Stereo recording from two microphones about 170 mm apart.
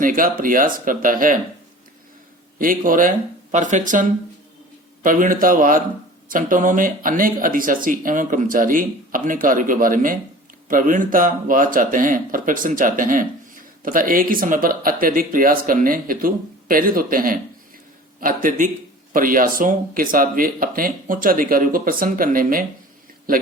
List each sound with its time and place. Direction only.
0.0 s speech: 55° right (ahead or behind)
2.6 s speech: 55° right (ahead or behind)
5.0 s speech: 50° right (ahead or behind)